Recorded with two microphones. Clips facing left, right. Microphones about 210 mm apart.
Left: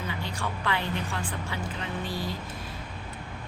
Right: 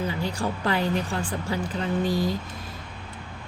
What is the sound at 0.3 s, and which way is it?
Speech, 35° right (ahead or behind).